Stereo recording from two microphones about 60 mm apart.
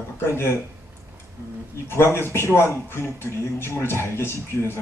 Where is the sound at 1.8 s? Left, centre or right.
Left.